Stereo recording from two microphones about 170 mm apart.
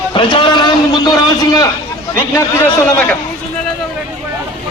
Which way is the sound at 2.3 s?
15° left (ahead or behind).